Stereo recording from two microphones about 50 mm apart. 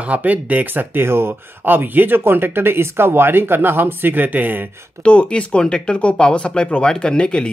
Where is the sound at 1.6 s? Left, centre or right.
Right.